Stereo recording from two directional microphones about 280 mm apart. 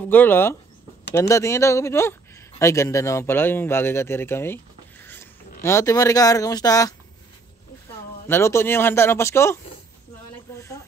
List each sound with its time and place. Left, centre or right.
0.1 s speech: centre
8.3 s speech: centre
10.5 s snake: centre